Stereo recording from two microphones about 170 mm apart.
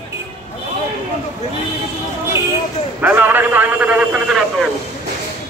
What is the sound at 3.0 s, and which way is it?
A man's voice, 10° right (ahead or behind).